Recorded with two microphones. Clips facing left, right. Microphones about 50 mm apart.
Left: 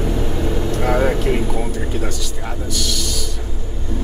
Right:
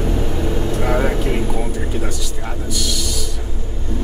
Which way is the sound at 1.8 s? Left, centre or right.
Centre.